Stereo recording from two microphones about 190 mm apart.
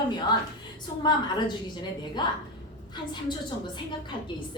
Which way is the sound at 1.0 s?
20° left (ahead or behind).